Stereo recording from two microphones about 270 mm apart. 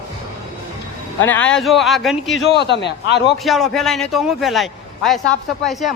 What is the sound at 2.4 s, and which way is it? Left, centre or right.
Speech, left.